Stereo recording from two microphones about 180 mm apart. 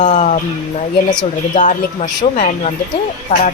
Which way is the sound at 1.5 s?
45° left (ahead or behind).